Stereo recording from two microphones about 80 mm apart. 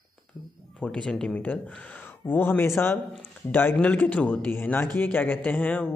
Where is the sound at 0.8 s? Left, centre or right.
Centre.